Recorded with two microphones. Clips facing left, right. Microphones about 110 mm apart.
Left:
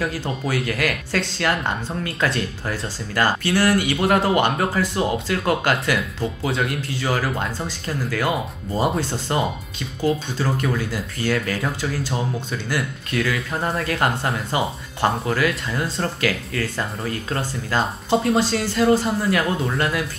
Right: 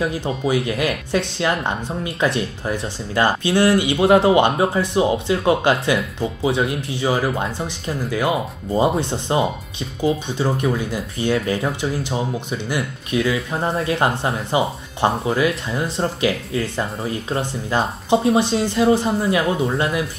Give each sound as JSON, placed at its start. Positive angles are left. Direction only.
{"t": 0.0, "sound": "speech", "side_deg": -20}